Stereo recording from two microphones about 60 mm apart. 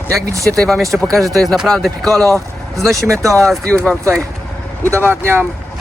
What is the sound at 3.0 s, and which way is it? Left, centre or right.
Speech, right.